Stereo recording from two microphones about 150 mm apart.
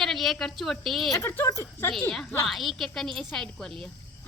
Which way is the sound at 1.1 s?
15° left (ahead or behind).